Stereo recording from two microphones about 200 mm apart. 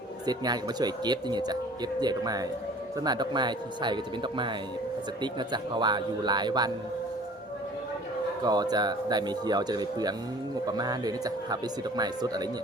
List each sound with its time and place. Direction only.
0.3 s speech: 20° right (ahead or behind)
8.4 s speech: 20° right (ahead or behind)